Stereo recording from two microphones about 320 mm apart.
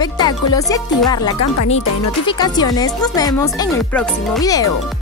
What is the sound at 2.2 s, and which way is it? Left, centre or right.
A woman's voice, centre.